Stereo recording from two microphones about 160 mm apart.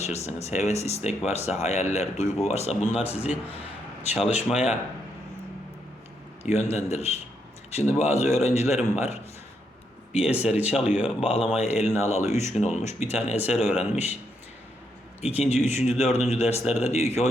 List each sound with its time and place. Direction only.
0.0 s a man's voice: 45° left (ahead or behind)
4.4 s speech: 5° right (ahead or behind)
6.4 s speech: 45° left (ahead or behind)
10.2 s speech: 5° right (ahead or behind)
11.2 s speech: 40° left (ahead or behind)
15.2 s speech: 40° left (ahead or behind)